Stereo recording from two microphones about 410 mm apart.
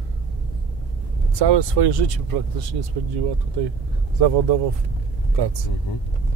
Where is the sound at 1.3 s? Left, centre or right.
Right.